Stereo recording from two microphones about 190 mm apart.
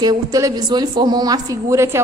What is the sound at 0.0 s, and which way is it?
A woman's voice, 20° right (ahead or behind).